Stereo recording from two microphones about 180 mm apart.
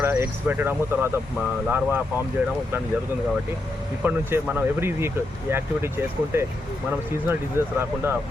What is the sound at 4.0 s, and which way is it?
Speech, 10° right (ahead or behind).